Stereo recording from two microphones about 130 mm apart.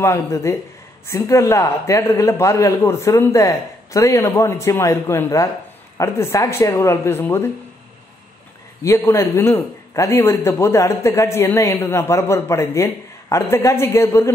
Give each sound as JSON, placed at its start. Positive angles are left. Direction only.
{"t": 0.0, "sound": "a man's voice", "side_deg": 20}
{"t": 8.8, "sound": "a man's voice", "side_deg": 20}